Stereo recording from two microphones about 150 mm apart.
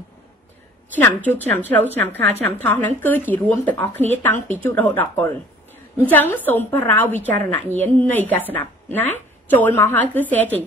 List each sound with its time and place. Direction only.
0.9 s speech: 10° left (ahead or behind)